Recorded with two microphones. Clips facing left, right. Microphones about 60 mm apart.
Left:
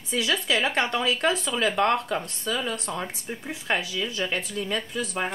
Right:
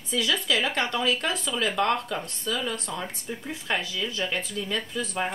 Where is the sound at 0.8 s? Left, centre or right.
Left.